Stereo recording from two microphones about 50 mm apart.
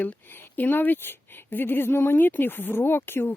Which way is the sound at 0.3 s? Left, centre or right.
Left.